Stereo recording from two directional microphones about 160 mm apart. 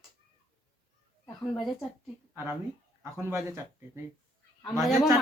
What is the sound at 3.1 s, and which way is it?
Speech, 15° right (ahead or behind).